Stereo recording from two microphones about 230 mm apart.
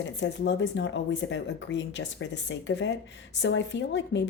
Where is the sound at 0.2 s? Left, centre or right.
Left.